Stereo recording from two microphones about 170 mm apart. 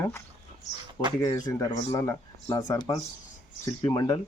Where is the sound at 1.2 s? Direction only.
20° left (ahead or behind).